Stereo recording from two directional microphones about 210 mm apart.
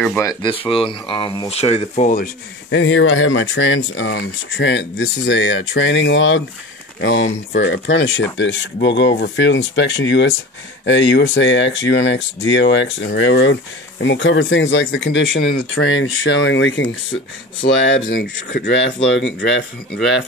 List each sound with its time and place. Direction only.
0.2 s speech: 20° left (ahead or behind); by 2.2 s 35° left (ahead or behind)
2.7 s speech: 65° left (ahead or behind)
18.1 s speech: 55° left (ahead or behind)